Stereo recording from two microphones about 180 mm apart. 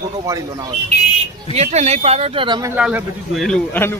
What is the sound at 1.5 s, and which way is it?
Speech, 35° right (ahead or behind).